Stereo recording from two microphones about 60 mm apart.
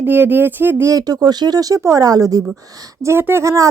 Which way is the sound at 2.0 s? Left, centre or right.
Right.